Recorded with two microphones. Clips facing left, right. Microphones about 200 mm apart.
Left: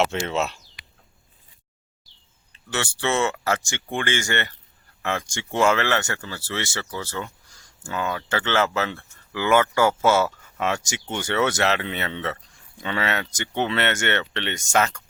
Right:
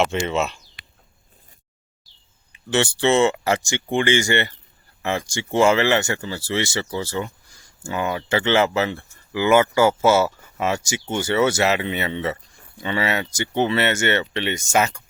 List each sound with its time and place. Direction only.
0.3 s speech: centre (ahead or behind)
2.5 s speech: 20° right (ahead or behind)